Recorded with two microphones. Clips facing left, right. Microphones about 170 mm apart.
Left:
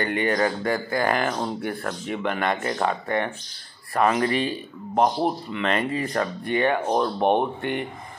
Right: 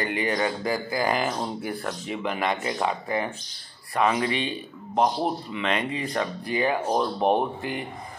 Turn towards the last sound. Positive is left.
turn(degrees=0)  # may be behind; listen again after turning